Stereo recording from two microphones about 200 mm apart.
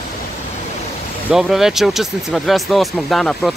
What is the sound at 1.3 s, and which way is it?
Speech, centre (ahead or behind).